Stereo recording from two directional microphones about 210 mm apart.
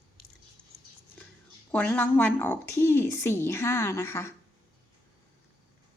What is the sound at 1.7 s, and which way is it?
Speech, 5° left (ahead or behind).